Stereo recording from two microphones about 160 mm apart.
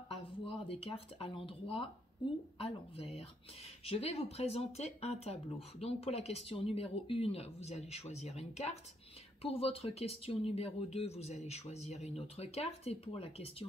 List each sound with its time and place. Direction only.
0.1 s speech: 35° left (ahead or behind)